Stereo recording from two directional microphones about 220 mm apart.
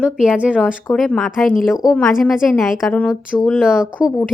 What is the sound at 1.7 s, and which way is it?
Speech, 15° left (ahead or behind).